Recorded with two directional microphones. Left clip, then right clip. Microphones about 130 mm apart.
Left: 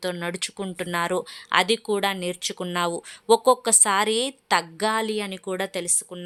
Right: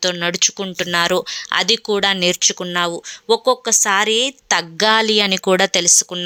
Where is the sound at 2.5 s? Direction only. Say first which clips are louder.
Right 6 dB; 5° right (ahead or behind).